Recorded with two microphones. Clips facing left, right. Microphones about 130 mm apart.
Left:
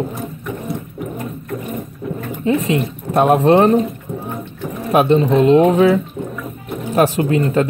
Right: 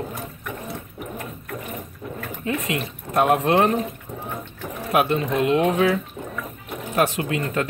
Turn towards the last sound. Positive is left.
turn(degrees=35)  # may be behind; listen again after turning